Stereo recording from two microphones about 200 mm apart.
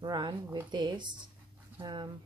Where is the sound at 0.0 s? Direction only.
20° right (ahead or behind).